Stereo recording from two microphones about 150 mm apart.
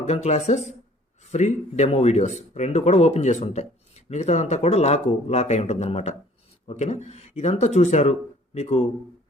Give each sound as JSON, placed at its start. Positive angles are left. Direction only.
{"t": 0.0, "sound": "speech", "side_deg": 50}